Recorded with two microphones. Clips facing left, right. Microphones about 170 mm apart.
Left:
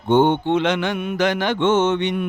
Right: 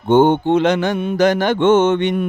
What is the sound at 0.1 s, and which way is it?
Speech, 45° right (ahead or behind).